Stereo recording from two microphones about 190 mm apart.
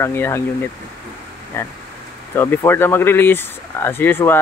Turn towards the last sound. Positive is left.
turn(degrees=10)  # may be behind; listen again after turning